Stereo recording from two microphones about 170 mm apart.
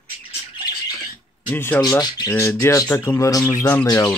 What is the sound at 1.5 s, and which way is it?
Speech, 15° left (ahead or behind).